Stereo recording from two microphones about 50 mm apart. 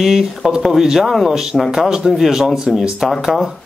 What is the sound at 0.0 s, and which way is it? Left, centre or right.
A man's voice, centre.